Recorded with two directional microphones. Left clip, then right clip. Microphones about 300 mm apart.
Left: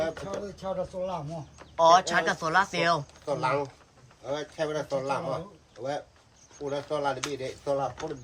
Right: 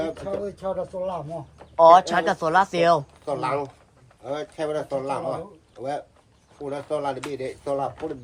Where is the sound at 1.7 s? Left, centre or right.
Centre.